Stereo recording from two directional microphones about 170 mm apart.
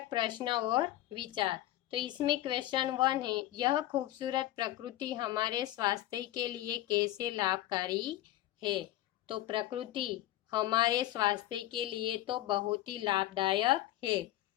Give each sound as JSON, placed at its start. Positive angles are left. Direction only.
{"t": 0.1, "sound": "a woman's voice", "side_deg": -25}
{"t": 9.2, "sound": "a woman's voice", "side_deg": -30}